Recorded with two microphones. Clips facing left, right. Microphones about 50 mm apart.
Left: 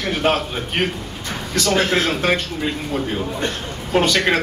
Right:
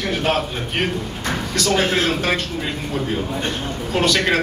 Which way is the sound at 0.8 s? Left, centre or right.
Centre.